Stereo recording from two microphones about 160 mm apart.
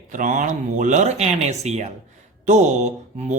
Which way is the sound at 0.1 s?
55° right (ahead or behind).